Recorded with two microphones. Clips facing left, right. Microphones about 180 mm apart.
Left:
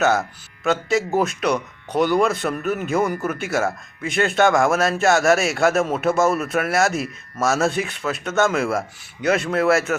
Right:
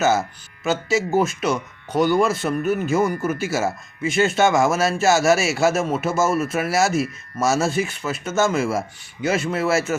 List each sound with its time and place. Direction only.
0.0 s speech: centre (ahead or behind)